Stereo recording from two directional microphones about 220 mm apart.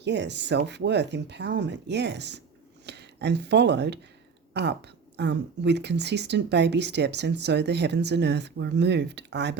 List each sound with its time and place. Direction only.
0.0 s speech: 50° right (ahead or behind)